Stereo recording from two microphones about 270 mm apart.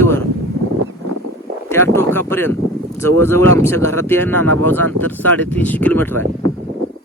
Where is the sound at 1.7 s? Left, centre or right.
Centre.